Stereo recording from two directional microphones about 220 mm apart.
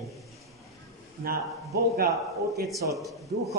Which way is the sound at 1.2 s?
45° right (ahead or behind).